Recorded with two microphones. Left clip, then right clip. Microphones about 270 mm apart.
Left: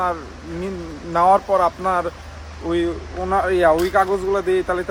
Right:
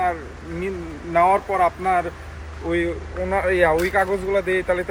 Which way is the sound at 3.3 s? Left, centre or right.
Centre.